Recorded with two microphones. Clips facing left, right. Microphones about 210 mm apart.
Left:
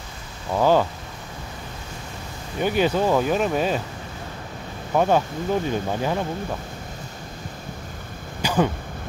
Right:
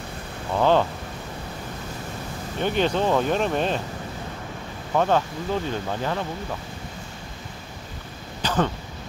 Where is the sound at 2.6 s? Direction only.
5° left (ahead or behind).